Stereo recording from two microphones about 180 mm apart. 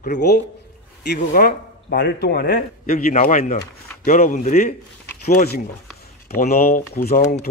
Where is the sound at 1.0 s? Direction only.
60° left (ahead or behind).